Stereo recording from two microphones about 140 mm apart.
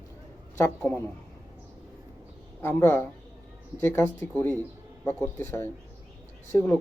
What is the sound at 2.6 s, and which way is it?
Speech, 15° left (ahead or behind).